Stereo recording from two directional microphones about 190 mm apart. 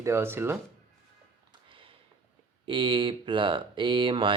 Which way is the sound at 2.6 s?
25° right (ahead or behind).